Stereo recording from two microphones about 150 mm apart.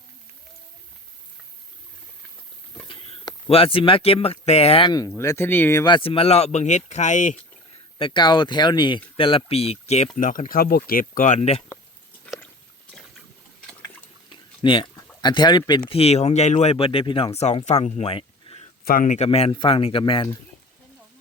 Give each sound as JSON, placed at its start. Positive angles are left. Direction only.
{"t": 2.8, "sound": "speech", "side_deg": 35}
{"t": 4.9, "sound": "speech", "side_deg": 25}
{"t": 5.8, "sound": "speech", "side_deg": 35}
{"t": 7.9, "sound": "speech", "side_deg": 35}
{"t": 10.2, "sound": "speech", "side_deg": 60}
{"t": 12.2, "sound": "biting", "side_deg": 10}
{"t": 14.6, "sound": "speech", "side_deg": 35}
{"t": 15.9, "sound": "speech", "side_deg": 45}
{"t": 17.7, "sound": "a sound", "side_deg": 50}
{"t": 18.9, "sound": "speech", "side_deg": 60}